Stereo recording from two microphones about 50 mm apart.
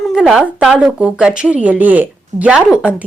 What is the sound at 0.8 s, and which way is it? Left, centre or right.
Speech, right.